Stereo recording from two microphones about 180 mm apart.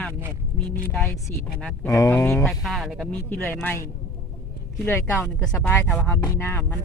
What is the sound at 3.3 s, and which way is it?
Speech, 10° left (ahead or behind).